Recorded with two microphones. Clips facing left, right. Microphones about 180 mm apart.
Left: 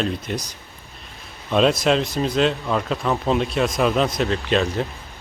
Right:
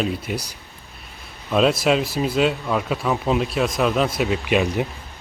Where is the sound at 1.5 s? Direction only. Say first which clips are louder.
Even; centre (ahead or behind).